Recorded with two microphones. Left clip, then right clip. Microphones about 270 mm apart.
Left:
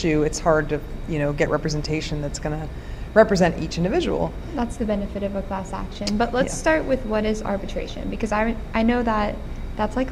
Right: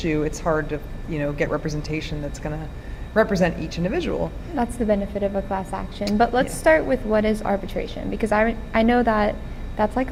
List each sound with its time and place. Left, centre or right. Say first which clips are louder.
0.0 s a woman's voice: left 3 dB; left
4.5 s a woman's voice: right 6 dB; right